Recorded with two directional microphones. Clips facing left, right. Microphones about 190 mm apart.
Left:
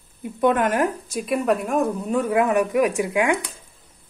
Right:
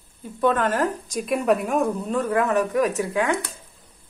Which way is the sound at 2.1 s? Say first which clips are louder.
Left 2 dB; 10° left (ahead or behind).